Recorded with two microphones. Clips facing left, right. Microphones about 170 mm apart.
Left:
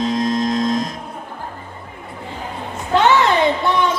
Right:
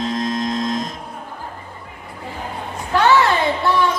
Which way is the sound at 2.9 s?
20° left (ahead or behind).